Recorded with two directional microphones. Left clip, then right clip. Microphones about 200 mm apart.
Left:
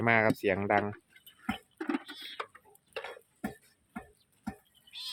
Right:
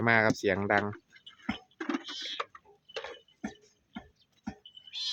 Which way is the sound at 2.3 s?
10° right (ahead or behind).